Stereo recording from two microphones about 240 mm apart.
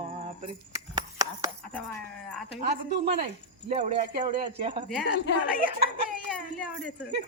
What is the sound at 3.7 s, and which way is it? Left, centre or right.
Speech, right.